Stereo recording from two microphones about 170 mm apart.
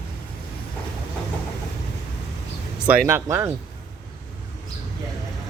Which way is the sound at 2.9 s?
10° right (ahead or behind).